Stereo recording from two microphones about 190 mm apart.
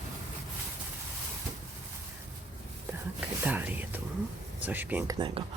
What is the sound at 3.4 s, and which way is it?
Speech, 10° right (ahead or behind).